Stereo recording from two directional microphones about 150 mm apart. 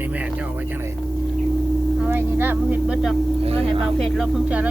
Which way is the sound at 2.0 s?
15° right (ahead or behind).